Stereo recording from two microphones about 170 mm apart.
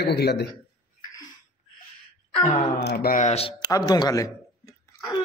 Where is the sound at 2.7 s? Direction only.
70° left (ahead or behind).